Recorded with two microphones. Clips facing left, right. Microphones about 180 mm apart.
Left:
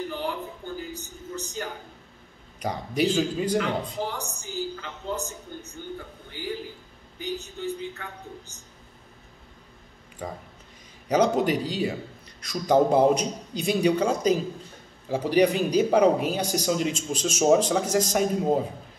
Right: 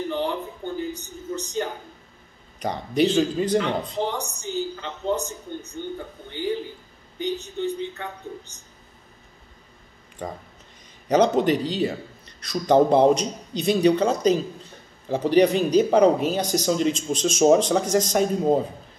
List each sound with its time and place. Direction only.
0.1 s a sound: 25° right (ahead or behind)
2.6 s a man's voice: 10° left (ahead or behind)
4.0 s a woman's voice: 20° right (ahead or behind)
8.5 s speech: 35° right (ahead or behind)
11.1 s a man's voice: 10° left (ahead or behind)